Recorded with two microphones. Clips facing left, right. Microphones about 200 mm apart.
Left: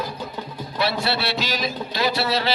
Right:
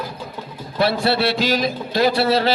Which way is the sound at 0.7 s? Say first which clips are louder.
Right 6 dB; 50° right (ahead or behind).